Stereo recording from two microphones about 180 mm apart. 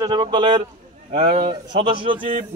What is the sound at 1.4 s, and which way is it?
Speech, 30° right (ahead or behind).